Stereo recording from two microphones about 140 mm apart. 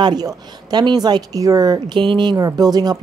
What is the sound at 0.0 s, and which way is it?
A woman's voice, 30° right (ahead or behind).